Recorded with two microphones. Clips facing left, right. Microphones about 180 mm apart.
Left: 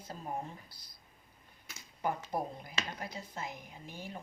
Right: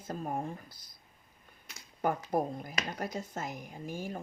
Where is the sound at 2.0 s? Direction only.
50° right (ahead or behind).